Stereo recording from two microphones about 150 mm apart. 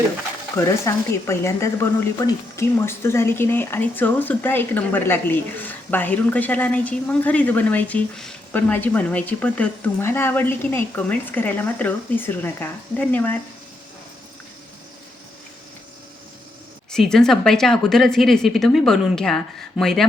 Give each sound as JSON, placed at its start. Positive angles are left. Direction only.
{"t": 0.5, "sound": "speech", "side_deg": 20}
{"t": 16.9, "sound": "speech", "side_deg": 5}